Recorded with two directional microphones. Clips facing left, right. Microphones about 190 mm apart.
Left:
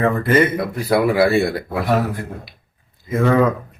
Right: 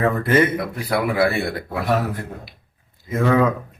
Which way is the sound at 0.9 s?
25° left (ahead or behind).